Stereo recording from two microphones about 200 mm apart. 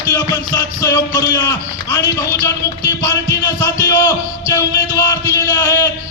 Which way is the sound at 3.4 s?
15° left (ahead or behind).